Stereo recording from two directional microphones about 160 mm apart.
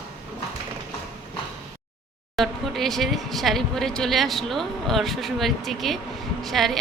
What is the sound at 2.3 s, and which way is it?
Speech, centre (ahead or behind).